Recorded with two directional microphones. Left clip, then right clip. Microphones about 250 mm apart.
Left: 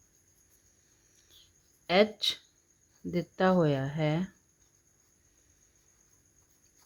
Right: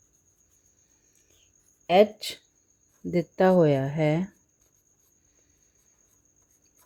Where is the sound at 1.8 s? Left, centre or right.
Centre.